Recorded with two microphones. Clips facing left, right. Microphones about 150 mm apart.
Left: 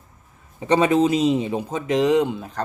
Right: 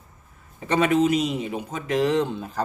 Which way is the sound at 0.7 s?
30° left (ahead or behind).